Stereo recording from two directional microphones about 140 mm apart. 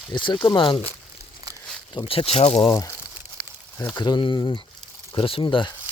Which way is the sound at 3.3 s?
10° left (ahead or behind).